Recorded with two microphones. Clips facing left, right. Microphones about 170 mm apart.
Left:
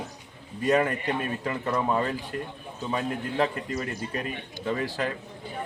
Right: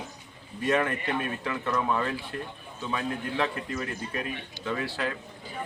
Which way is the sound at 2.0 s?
40° left (ahead or behind).